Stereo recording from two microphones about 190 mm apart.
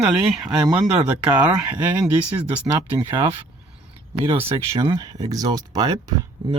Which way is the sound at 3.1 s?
25° right (ahead or behind).